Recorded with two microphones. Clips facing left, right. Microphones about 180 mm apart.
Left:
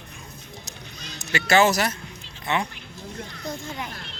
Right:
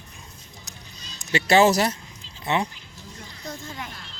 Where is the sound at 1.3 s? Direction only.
30° right (ahead or behind).